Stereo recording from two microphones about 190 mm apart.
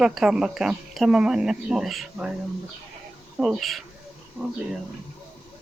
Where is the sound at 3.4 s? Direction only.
Centre (ahead or behind).